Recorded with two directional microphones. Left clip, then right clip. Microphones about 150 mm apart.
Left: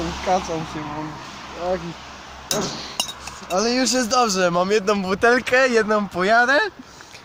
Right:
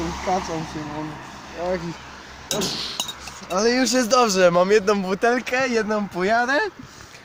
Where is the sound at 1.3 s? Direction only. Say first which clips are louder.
Left 1 dB; 25° right (ahead or behind).